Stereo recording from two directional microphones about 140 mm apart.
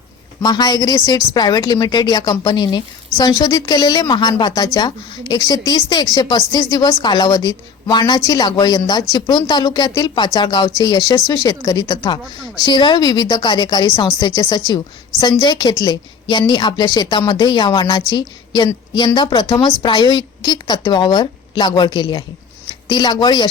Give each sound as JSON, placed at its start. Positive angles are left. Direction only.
{"t": 0.4, "sound": "a woman's voice", "side_deg": 30}